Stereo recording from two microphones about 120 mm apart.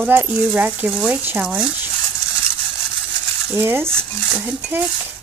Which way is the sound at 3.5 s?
20° right (ahead or behind).